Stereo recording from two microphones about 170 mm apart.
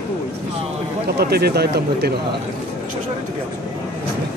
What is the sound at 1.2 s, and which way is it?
Speech, 70° right (ahead or behind).